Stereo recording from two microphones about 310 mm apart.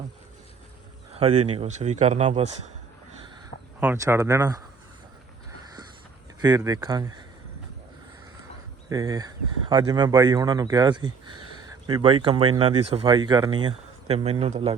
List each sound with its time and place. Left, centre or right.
1.1 s speech: centre
3.8 s speech: centre
6.4 s speech: centre
8.9 s speech: centre